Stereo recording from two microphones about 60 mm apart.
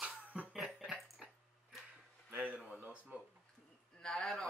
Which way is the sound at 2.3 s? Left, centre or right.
Right.